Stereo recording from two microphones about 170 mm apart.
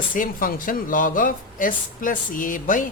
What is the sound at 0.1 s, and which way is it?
Speech, 55° left (ahead or behind).